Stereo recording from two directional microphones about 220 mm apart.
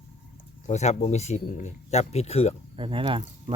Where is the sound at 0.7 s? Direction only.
30° left (ahead or behind).